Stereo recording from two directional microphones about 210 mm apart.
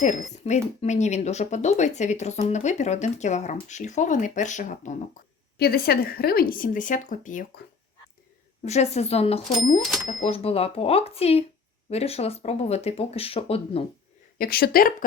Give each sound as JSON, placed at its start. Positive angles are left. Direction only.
{"t": 0.4, "sound": "speech", "side_deg": 35}
{"t": 5.5, "sound": "speech", "side_deg": 45}
{"t": 8.6, "sound": "speech", "side_deg": 30}
{"t": 14.3, "sound": "speech", "side_deg": 45}